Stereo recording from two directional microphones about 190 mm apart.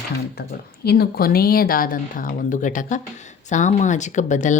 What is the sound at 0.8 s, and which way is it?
Speech, 55° left (ahead or behind).